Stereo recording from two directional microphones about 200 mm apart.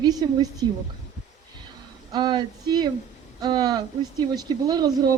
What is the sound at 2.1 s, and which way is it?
A man's voice, 20° right (ahead or behind).